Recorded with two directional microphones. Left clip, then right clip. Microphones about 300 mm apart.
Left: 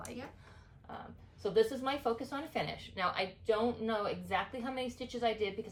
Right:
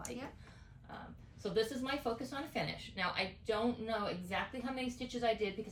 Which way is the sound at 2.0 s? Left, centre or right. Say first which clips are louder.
Left 4 dB; centre.